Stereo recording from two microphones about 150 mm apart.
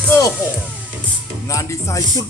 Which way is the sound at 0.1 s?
20° left (ahead or behind).